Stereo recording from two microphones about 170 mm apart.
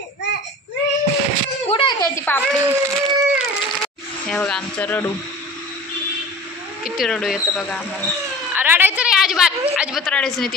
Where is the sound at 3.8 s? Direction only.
5° left (ahead or behind).